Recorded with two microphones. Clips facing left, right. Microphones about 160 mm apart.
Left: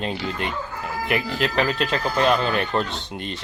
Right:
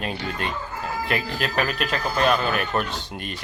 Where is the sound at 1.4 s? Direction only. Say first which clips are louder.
Left 3 dB; 20° left (ahead or behind).